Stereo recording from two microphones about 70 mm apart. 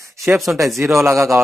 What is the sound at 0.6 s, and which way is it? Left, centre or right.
Speech, right.